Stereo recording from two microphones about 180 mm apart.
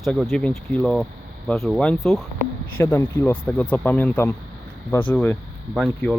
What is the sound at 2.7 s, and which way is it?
Speech, 15° left (ahead or behind).